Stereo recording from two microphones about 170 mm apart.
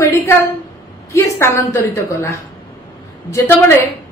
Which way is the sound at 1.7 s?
15° left (ahead or behind).